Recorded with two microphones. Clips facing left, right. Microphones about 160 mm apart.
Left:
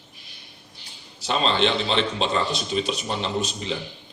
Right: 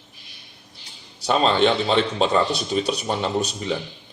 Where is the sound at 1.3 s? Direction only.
50° right (ahead or behind).